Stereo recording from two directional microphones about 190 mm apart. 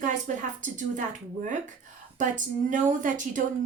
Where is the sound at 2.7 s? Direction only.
45° right (ahead or behind).